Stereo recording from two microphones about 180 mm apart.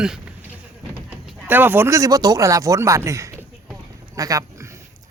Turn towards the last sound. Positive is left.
turn(degrees=-20)  # may be behind; listen again after turning